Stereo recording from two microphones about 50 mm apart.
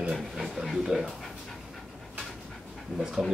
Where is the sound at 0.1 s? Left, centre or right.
Centre.